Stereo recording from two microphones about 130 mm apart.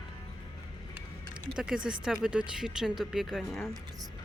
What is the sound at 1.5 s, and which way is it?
Speech, 5° right (ahead or behind).